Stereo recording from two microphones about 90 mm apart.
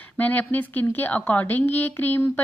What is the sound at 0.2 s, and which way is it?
A woman's voice, 20° left (ahead or behind).